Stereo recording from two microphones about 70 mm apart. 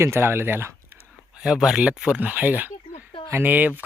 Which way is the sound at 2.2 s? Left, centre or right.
Right.